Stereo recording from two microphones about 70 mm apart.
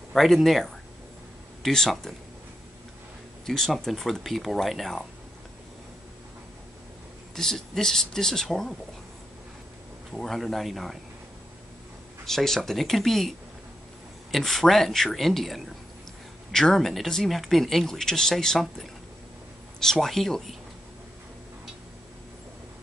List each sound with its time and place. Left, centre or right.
0.1 s speech: centre
3.4 s speech: centre
7.3 s speech: centre
10.1 s speech: centre
12.3 s speech: centre
14.3 s speech: centre